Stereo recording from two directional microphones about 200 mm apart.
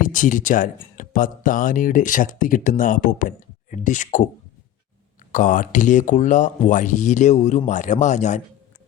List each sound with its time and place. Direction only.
0.0 s speech: 40° left (ahead or behind)
5.3 s speech: 40° left (ahead or behind)